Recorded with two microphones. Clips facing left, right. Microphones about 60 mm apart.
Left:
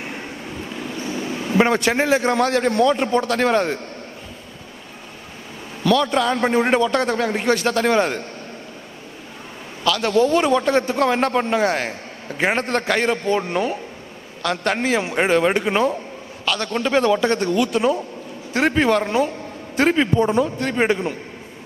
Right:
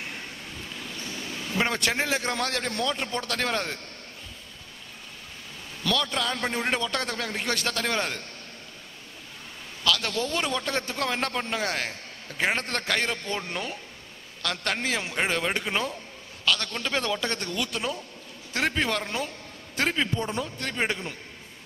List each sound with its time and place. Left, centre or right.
0.0 s a sound: left
5.8 s a man's voice: centre
9.8 s a man's voice: centre